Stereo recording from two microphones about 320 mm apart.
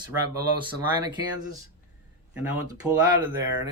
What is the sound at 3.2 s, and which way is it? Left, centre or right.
Speech, centre.